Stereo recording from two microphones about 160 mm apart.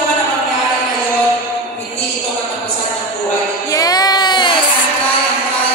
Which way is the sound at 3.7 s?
25° left (ahead or behind).